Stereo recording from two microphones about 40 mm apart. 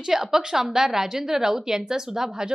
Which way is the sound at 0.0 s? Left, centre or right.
Centre.